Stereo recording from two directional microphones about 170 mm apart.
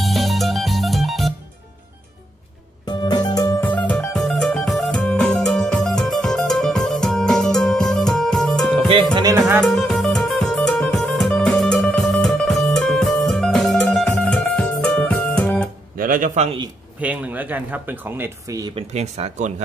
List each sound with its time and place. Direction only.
0.0 s music: centre (ahead or behind)
2.8 s music: 25° left (ahead or behind)
3.7 s music: 5° left (ahead or behind)
8.8 s speech: 30° right (ahead or behind)
9.6 s music: 5° left (ahead or behind)
16.0 s a sound: 55° right (ahead or behind)
17.0 s speech: 10° right (ahead or behind)
18.8 s speech: 40° right (ahead or behind)